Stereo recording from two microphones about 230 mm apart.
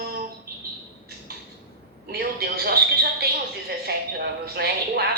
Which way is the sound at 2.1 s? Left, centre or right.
Right.